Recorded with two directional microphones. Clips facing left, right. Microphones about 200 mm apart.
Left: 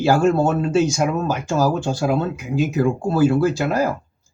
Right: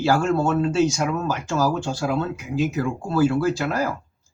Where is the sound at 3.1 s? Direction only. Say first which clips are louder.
Left 1 dB; 15° left (ahead or behind).